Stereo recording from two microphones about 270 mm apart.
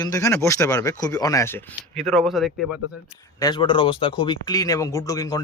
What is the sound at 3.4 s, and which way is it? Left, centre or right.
Speech, centre.